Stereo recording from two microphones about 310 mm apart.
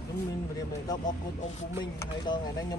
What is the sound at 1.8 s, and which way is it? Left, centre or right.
Speech, centre.